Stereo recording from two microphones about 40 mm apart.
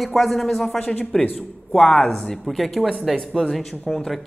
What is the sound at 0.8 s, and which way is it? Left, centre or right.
Speech, left.